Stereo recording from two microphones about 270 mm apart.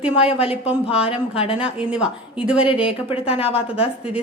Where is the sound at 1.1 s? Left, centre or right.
Left.